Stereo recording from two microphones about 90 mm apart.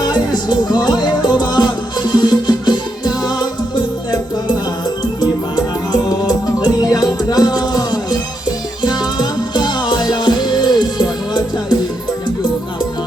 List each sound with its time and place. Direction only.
0.0 s music: 50° left (ahead or behind)
5.2 s music: 50° left (ahead or behind)